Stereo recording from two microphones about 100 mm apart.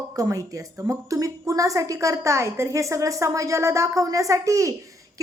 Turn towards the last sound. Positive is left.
turn(degrees=-30)  # may be behind; listen again after turning